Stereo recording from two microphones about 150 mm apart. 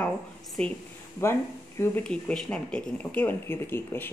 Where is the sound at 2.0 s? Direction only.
5° left (ahead or behind).